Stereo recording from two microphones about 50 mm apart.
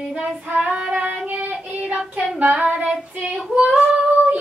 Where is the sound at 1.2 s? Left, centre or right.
Right.